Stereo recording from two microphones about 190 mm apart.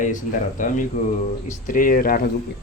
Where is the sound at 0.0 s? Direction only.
40° left (ahead or behind).